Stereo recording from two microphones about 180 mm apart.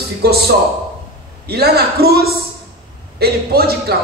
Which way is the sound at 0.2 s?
60° right (ahead or behind).